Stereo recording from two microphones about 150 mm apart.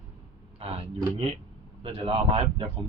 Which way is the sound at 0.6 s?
45° right (ahead or behind).